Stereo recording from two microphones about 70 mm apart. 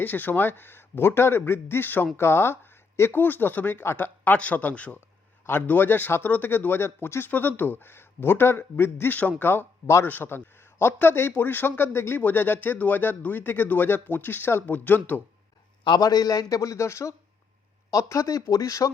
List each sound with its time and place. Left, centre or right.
0.0 s a man's voice: left
16.0 s a man's voice: left